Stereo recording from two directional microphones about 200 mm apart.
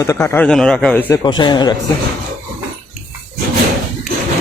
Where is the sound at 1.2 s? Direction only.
20° left (ahead or behind).